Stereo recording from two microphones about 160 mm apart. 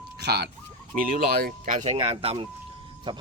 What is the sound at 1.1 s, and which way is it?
Speech, 70° right (ahead or behind).